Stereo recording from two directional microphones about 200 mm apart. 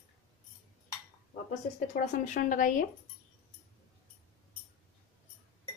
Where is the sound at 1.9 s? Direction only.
40° left (ahead or behind).